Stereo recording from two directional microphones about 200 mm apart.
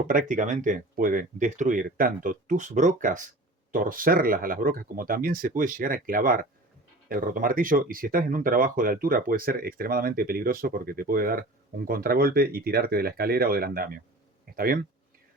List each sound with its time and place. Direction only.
0.1 s speech: 40° right (ahead or behind)